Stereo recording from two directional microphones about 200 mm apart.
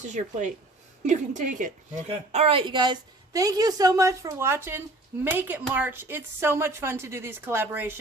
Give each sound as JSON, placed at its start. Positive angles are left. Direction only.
{"t": 0.0, "sound": "speech", "side_deg": -35}
{"t": 2.0, "sound": "speech", "side_deg": -30}